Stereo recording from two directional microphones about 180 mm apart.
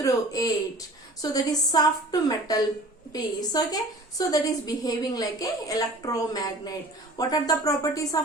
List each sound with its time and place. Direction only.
0.0 s a woman's voice: 20° left (ahead or behind)